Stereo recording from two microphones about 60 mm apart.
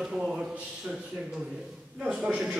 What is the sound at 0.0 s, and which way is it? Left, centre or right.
Speech, centre.